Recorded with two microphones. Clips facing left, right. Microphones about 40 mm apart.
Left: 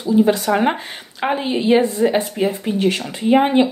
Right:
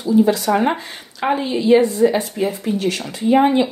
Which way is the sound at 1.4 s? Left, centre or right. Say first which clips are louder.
Right 2 dB; left.